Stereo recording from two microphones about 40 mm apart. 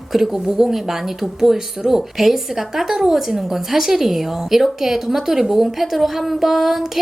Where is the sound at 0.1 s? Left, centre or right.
Centre.